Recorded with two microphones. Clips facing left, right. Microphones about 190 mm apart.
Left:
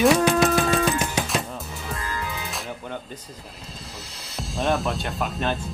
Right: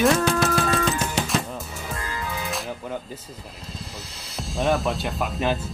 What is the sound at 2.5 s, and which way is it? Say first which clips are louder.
Music: right 3 dB; centre (ahead or behind).